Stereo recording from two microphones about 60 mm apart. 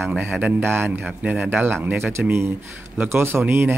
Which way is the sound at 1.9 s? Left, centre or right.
Right.